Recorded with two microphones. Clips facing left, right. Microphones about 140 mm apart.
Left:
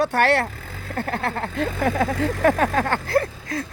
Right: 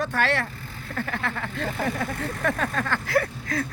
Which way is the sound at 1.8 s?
90° left.